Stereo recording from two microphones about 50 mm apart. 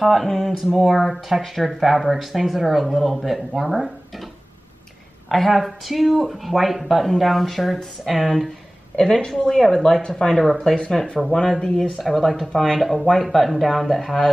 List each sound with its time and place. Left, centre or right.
0.0 s speech: centre
5.3 s speech: centre
8.9 s a woman's voice: centre
12.0 s a woman's voice: centre